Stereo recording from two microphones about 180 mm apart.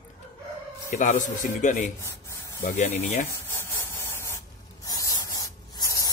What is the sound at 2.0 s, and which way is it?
Spray, 15° left (ahead or behind).